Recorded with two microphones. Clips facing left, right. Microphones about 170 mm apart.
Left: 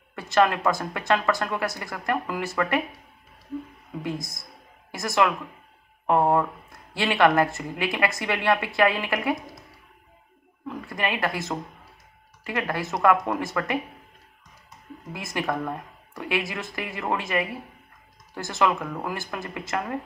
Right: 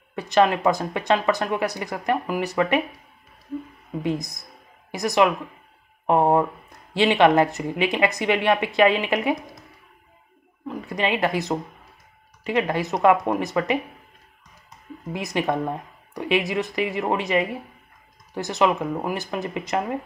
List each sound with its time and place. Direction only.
0.1 s speech: 20° right (ahead or behind)
4.0 s speech: 20° right (ahead or behind)
10.7 s speech: 20° right (ahead or behind)
15.1 s speech: 20° right (ahead or behind)